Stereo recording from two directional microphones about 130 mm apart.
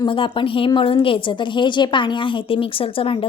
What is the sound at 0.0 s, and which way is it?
A woman's voice, 40° left (ahead or behind).